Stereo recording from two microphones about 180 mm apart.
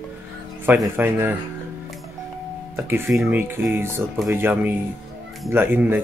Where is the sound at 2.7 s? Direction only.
15° right (ahead or behind).